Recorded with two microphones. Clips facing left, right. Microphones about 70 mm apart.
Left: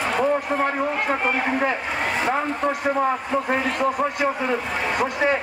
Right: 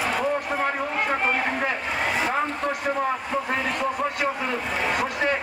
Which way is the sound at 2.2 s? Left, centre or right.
Centre.